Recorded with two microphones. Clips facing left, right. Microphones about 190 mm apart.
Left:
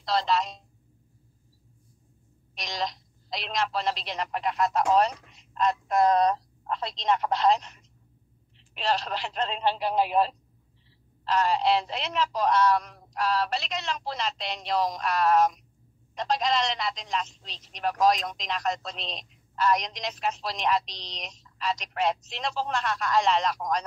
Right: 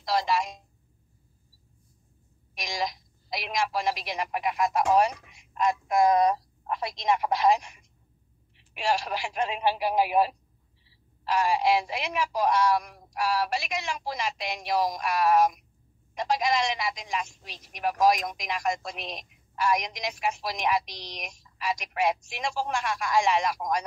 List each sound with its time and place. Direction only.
0.0 s a woman's voice: 10° right (ahead or behind)
2.5 s a woman's voice: 10° right (ahead or behind)